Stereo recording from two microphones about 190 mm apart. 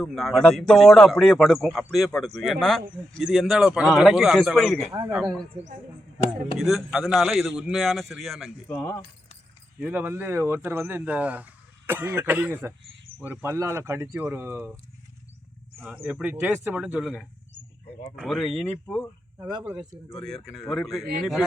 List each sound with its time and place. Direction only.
0.0 s speech: centre (ahead or behind)
4.9 s speech: 15° right (ahead or behind)
5.1 s speech: centre (ahead or behind)
8.6 s speech: 10° left (ahead or behind)
9.8 s speech: 10° right (ahead or behind)
16.0 s speech: 5° right (ahead or behind)
19.7 s speech: 20° right (ahead or behind)
20.1 s speech: centre (ahead or behind)